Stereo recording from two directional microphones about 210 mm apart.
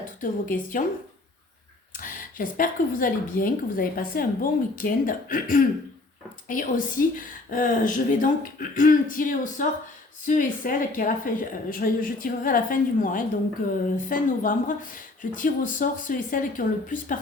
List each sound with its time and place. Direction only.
0.0 s a woman's voice: 40° left (ahead or behind)
2.0 s speech: 40° left (ahead or behind)